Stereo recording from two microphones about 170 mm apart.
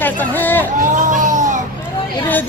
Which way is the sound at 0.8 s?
45° right (ahead or behind).